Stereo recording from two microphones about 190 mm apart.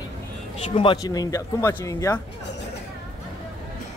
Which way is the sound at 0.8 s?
25° left (ahead or behind).